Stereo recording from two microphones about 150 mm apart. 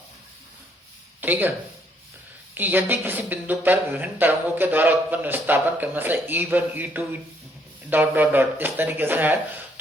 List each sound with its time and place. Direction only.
1.2 s speech: 10° right (ahead or behind)
2.6 s a woman's voice: 10° right (ahead or behind)